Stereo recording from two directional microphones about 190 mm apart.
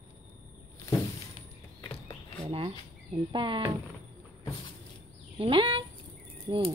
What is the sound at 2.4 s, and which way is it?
Speech, 30° right (ahead or behind).